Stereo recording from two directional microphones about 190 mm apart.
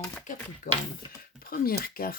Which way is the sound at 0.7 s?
45° left (ahead or behind).